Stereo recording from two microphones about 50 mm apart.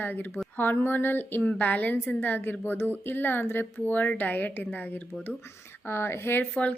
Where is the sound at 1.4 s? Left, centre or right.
Left.